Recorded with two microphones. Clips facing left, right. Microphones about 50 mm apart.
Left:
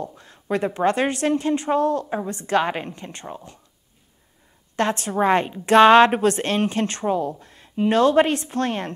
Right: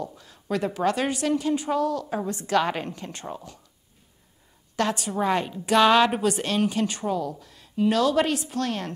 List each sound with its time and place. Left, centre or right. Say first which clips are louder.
0.2 s a sound: left 4 dB; left
0.7 s a woman's voice: left 4 dB; left
4.7 s speech: left 4 dB; left